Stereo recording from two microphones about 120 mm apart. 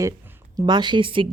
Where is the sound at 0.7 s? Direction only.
40° right (ahead or behind).